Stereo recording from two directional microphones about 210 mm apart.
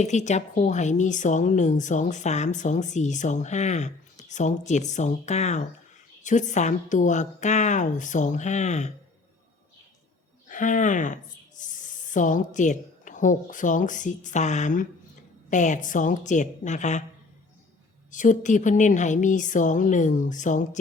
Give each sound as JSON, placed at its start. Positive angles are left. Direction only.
{"t": 0.0, "sound": "a woman's voice", "side_deg": 35}
{"t": 10.5, "sound": "a woman's voice", "side_deg": 35}
{"t": 18.1, "sound": "a woman's voice", "side_deg": 35}